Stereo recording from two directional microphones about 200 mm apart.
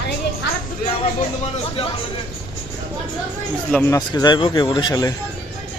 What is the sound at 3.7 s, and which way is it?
A man's voice, 15° left (ahead or behind).